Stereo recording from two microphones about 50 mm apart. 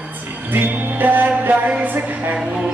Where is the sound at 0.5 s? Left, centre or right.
Right.